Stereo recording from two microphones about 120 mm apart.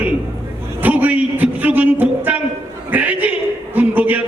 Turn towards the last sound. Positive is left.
turn(degrees=-15)  # may be behind; listen again after turning